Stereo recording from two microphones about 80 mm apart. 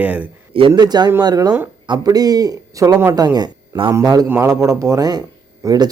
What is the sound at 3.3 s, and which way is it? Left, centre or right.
Speech, right.